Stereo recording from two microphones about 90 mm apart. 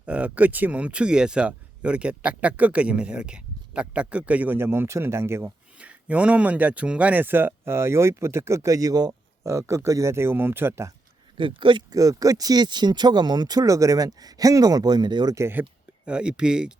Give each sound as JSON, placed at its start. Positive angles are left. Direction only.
{"t": 0.0, "sound": "speech", "side_deg": -15}
{"t": 5.8, "sound": "speech", "side_deg": -15}
{"t": 9.4, "sound": "speech", "side_deg": -35}
{"t": 11.3, "sound": "speech", "side_deg": -70}
{"t": 11.9, "sound": "speech", "side_deg": -40}
{"t": 15.4, "sound": "speech", "side_deg": -25}
{"t": 16.0, "sound": "speech", "side_deg": -10}